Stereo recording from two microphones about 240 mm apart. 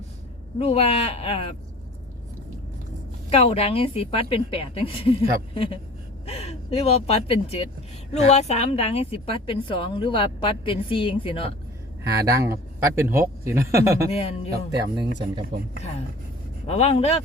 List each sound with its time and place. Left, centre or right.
0.6 s a woman's voice: left
3.2 s a woman's voice: left
6.2 s a woman's voice: left
12.2 s speech: centre
14.1 s a woman's voice: left
14.5 s speech: right
16.6 s a woman's voice: left